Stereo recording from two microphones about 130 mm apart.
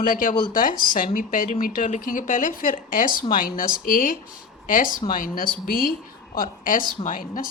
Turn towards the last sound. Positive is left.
turn(degrees=90)